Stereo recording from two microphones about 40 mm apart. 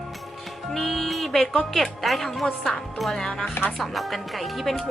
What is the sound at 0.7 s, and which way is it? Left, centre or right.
A woman's voice, centre.